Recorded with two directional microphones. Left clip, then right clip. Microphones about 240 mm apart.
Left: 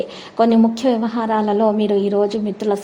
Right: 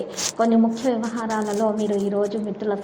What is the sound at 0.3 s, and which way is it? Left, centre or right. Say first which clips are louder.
A woman's voice: left 5 dB; left.